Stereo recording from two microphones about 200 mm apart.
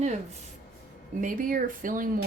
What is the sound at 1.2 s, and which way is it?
A woman's voice, 40° right (ahead or behind).